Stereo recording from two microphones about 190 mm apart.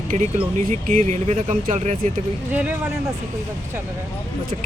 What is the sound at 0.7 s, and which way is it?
Speech, 40° right (ahead or behind).